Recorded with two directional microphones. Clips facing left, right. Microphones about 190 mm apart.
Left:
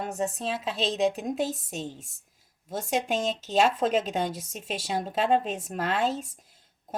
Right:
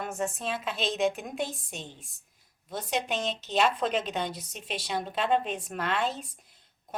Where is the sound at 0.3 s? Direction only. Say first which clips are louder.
Left 2 dB; 35° left (ahead or behind).